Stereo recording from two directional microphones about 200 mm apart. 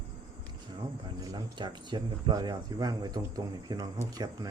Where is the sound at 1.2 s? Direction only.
20° right (ahead or behind).